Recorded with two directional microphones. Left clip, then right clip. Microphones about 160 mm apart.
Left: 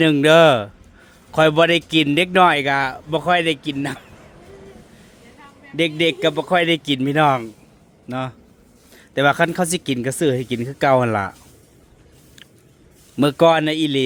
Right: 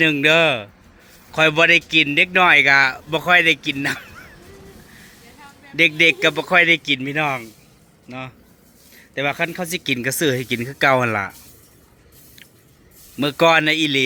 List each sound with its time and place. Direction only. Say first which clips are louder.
0.0 s a man's voice: left 3 dB; 35° left (ahead or behind)
1.3 s a man's voice: even; 35° left (ahead or behind)
5.7 s a man's voice: right 4 dB; 25° left (ahead or behind); by 9.8 s 50° left (ahead or behind)
9.8 s a man's voice: even; 25° left (ahead or behind)
13.3 s a man's voice: right 1 dB; 25° left (ahead or behind)